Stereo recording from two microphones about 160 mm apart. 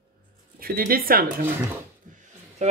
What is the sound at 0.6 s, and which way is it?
Speech, 65° right (ahead or behind).